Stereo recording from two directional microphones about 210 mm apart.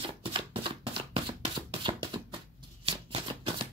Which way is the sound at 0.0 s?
25° right (ahead or behind).